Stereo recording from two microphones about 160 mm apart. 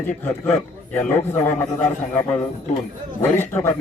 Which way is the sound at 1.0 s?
15° left (ahead or behind).